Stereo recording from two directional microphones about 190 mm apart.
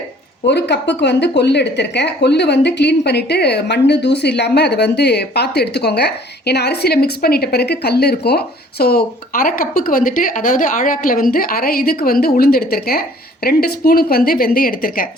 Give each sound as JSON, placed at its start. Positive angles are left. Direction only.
{"t": 0.4, "sound": "speech", "side_deg": 65}